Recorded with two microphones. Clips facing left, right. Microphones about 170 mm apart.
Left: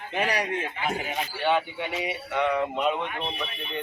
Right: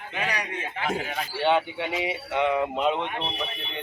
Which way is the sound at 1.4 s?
20° right (ahead or behind).